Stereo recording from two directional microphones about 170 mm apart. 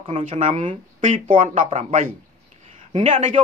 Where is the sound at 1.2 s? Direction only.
50° right (ahead or behind).